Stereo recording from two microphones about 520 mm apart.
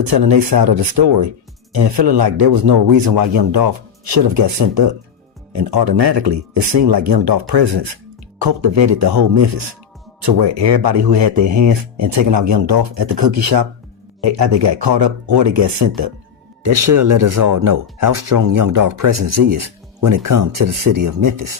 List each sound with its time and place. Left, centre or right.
0.0 s speech: right
6.3 s speech: right
7.1 s speech: right
10.2 s speech: right
10.5 s speech: right
14.7 s speech: right